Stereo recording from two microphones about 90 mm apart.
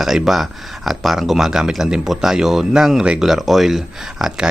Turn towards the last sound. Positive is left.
turn(degrees=-5)  # may be behind; listen again after turning